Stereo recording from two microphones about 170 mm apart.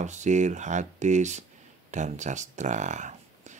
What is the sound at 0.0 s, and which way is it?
Speech, 45° right (ahead or behind).